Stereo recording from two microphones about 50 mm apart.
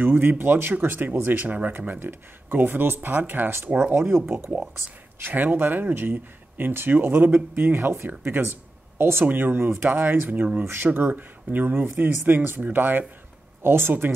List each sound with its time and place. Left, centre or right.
0.0 s speech: right
8.9 s speech: right
9.2 s speech: right
13.6 s speech: right